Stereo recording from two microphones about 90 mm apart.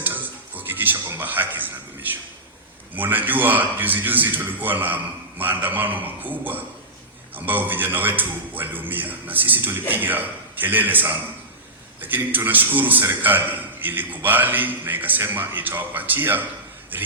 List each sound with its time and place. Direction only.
0.0 s music: 20° right (ahead or behind)
2.9 s a man's voice: 20° right (ahead or behind)